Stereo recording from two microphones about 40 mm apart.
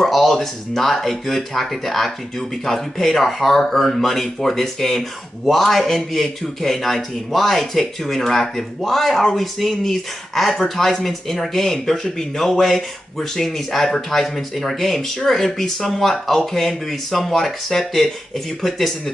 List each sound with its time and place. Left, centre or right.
0.0 s a man's voice: centre